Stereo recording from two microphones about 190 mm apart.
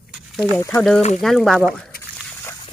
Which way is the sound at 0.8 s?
5° left (ahead or behind).